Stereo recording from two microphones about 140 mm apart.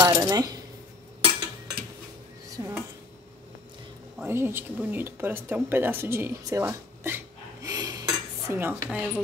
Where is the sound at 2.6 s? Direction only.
25° right (ahead or behind).